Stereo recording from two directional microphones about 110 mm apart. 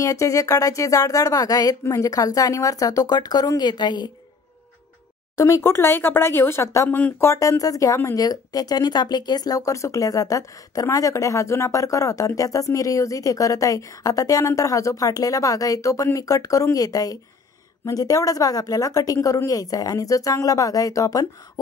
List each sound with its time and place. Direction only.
0.0 s speech: 30° left (ahead or behind)
5.4 s speech: 25° left (ahead or behind)
7.0 s speech: 15° left (ahead or behind)
7.2 s speech: 30° left (ahead or behind)